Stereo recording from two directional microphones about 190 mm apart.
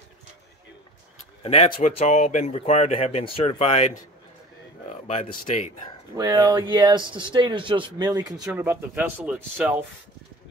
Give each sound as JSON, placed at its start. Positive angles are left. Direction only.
{"t": 1.4, "sound": "speech", "side_deg": 35}
{"t": 5.0, "sound": "speech", "side_deg": 35}
{"t": 6.1, "sound": "speech", "side_deg": -20}
{"t": 8.5, "sound": "a man's voice", "side_deg": -10}